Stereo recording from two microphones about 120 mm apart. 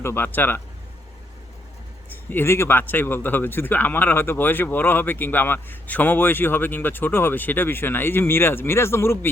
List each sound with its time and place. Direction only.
0.0 s speech: 20° left (ahead or behind)
2.3 s speech: 20° left (ahead or behind)